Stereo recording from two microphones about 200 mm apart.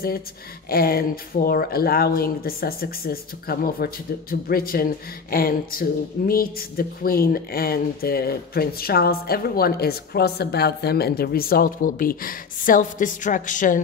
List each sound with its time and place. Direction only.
0.7 s speech: 50° left (ahead or behind)